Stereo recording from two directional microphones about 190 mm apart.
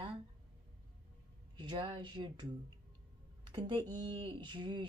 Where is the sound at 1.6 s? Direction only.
25° right (ahead or behind).